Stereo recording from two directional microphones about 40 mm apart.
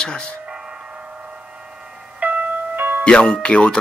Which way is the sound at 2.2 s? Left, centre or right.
Right.